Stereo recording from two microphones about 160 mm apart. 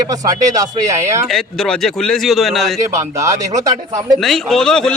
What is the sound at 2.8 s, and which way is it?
Speech, 20° right (ahead or behind).